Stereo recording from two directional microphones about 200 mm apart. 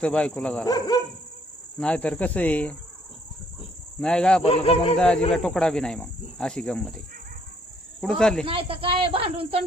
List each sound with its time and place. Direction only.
0.0 s speech: 5° left (ahead or behind)
0.6 s speech: 20° left (ahead or behind)
1.8 s speech: 5° left (ahead or behind)
4.0 s speech: 5° left (ahead or behind)
4.4 s speech: 30° left (ahead or behind)
4.9 s speech: 5° left (ahead or behind)
8.0 s speech: 5° left (ahead or behind)
8.4 s speech: 25° right (ahead or behind)